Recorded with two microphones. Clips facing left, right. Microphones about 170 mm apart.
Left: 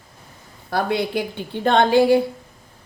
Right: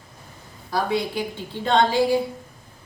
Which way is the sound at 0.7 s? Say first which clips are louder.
Left 2 dB; 65° left (ahead or behind).